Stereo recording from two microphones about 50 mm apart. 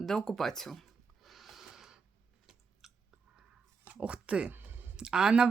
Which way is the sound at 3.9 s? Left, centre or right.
Right.